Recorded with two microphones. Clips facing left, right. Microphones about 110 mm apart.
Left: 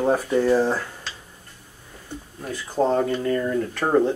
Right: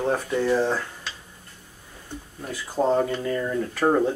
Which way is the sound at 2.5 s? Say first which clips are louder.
Left 1 dB; 5° right (ahead or behind).